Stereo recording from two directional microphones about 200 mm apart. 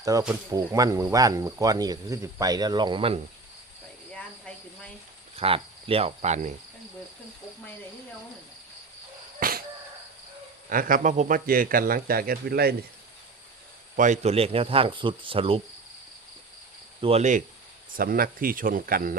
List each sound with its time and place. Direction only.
0.0 s speech: 15° right (ahead or behind)
4.1 s cricket: 5° left (ahead or behind)
5.4 s cricket: 30° right (ahead or behind)
9.4 s a sound: 45° right (ahead or behind)
10.7 s a man's voice: 45° right (ahead or behind)
13.9 s speech: 40° right (ahead or behind)
17.0 s cricket: 30° right (ahead or behind)
17.9 s a man's voice: 45° right (ahead or behind)